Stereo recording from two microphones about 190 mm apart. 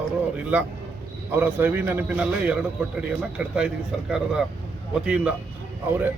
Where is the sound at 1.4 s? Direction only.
10° right (ahead or behind).